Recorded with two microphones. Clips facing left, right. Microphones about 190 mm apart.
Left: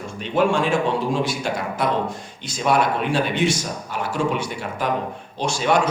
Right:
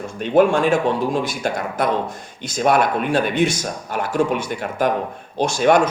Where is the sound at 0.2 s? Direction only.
50° right (ahead or behind).